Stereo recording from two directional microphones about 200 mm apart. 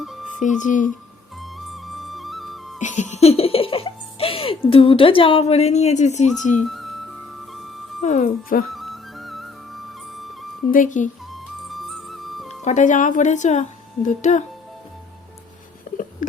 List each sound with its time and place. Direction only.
0.0 s music: centre (ahead or behind)
0.3 s a woman's voice: 40° left (ahead or behind)
1.4 s music: centre (ahead or behind)
2.8 s speech: 35° left (ahead or behind)
6.7 s music: centre (ahead or behind)
8.0 s a woman's voice: 35° left (ahead or behind)
8.7 s music: centre (ahead or behind)
10.7 s a woman's voice: 40° left (ahead or behind)
11.3 s music: centre (ahead or behind)
12.6 s a woman's voice: 40° left (ahead or behind)
15.9 s a sound: 40° left (ahead or behind)